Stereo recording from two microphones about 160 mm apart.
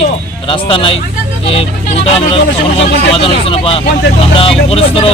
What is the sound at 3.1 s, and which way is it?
A man's voice, 35° left (ahead or behind).